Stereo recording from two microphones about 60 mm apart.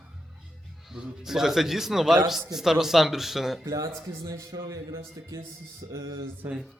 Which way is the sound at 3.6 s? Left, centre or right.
Right.